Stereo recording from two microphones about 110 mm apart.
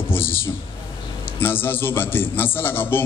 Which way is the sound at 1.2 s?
20° left (ahead or behind).